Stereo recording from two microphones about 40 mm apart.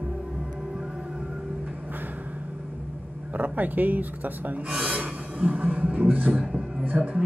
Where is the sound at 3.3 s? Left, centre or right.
Right.